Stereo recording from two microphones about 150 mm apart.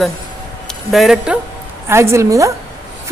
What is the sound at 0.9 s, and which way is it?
Speech, centre (ahead or behind).